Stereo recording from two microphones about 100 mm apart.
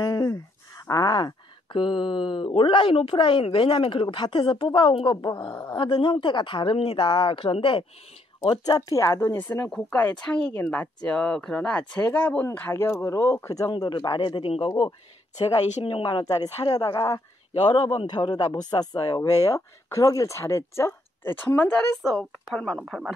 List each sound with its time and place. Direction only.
0.0 s speech: 40° left (ahead or behind); by 5.3 s 55° left (ahead or behind)
5.4 s speech: 40° left (ahead or behind)
5.8 s speech: 55° left (ahead or behind)
8.5 s speech: 40° left (ahead or behind); by 9.7 s 25° left (ahead or behind)
9.7 s speech: 10° left (ahead or behind); by 13.7 s 30° left (ahead or behind)
13.7 s a man's voice: 50° left (ahead or behind)
15.8 s speech: 65° left (ahead or behind)
16.3 s speech: 40° left (ahead or behind); by 21.7 s 20° left (ahead or behind)
22.0 s speech: 5° left (ahead or behind)